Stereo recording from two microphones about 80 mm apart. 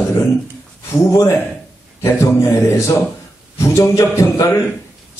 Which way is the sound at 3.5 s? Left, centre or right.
Left.